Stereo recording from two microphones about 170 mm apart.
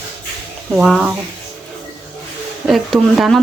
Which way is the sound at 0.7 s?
Centre (ahead or behind).